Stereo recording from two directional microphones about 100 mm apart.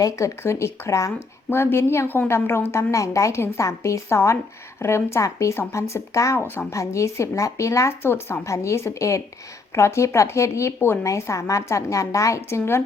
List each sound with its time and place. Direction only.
0.0 s a woman's voice: 30° left (ahead or behind)